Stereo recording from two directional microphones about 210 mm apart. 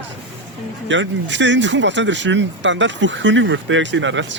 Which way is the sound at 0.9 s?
60° right (ahead or behind).